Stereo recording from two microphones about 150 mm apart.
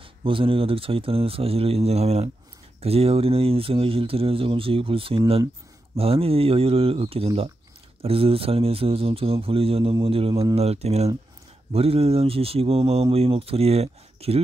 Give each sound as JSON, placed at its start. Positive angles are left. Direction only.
{"t": 0.2, "sound": "speech", "side_deg": -35}